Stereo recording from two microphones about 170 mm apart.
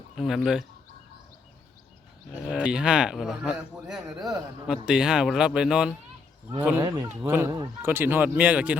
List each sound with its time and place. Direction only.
0.2 s speech: centre (ahead or behind)
2.3 s speech: 5° right (ahead or behind)